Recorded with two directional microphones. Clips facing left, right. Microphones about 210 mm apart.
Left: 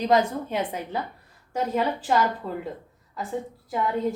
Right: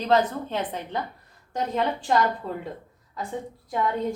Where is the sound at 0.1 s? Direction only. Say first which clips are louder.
Right 1 dB; 10° left (ahead or behind).